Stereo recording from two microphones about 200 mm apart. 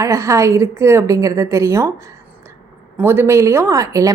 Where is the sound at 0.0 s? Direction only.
15° right (ahead or behind).